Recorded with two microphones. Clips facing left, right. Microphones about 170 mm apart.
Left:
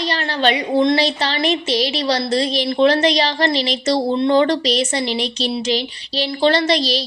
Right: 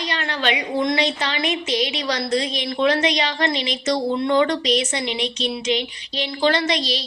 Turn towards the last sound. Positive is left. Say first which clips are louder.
# left 4 dB
turn(degrees=35)  # may be behind; listen again after turning